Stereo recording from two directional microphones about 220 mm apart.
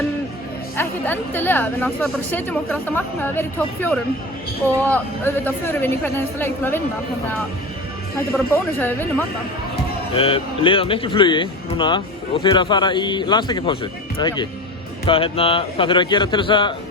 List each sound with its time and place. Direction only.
0.8 s a woman's voice: 10° left (ahead or behind)
8.8 s a woman's voice: 10° left (ahead or behind)
10.2 s speech: 25° left (ahead or behind)